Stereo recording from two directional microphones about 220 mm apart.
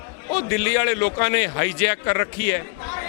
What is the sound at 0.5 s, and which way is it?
A man's voice, 10° left (ahead or behind).